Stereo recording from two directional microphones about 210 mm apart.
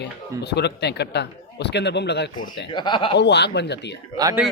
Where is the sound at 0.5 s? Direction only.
55° left (ahead or behind).